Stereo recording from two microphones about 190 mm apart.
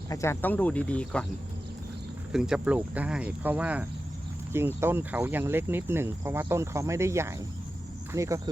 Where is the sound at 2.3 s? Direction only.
5° right (ahead or behind).